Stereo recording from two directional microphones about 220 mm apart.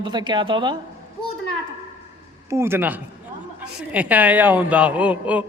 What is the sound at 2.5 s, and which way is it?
A man's voice, 10° right (ahead or behind).